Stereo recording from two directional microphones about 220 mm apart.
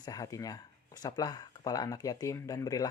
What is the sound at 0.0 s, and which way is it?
Speech, 15° left (ahead or behind).